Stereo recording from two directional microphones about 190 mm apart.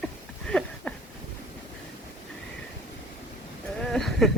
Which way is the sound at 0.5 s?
5° left (ahead or behind).